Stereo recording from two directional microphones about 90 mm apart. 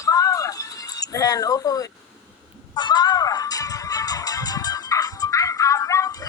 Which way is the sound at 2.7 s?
55° left (ahead or behind).